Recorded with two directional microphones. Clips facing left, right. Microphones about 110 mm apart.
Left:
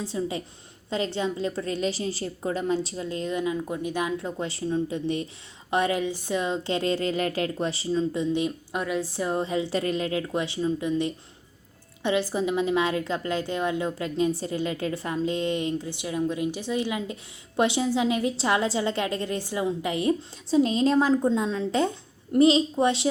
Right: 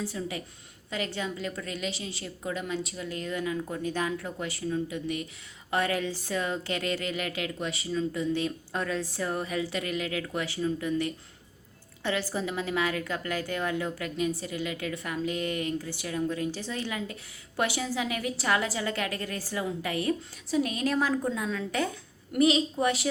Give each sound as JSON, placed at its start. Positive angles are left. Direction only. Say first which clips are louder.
{"t": 0.0, "sound": "a woman's voice", "louder": "left 4 dB", "side_deg": 25}
{"t": 4.4, "sound": "a woman's voice", "louder": "left 5 dB", "side_deg": 30}
{"t": 5.7, "sound": "a woman's voice", "louder": "left 4 dB", "side_deg": 20}